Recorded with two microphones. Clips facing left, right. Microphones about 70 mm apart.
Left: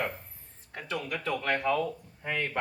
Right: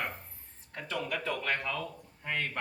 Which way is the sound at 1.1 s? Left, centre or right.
Centre.